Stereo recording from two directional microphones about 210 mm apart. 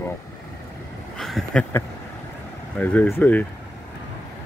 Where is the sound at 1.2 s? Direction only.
Centre (ahead or behind).